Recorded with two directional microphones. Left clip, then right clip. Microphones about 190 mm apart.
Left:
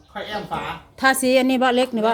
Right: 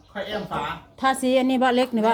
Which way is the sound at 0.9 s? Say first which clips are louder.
Left 4 dB; 20° left (ahead or behind).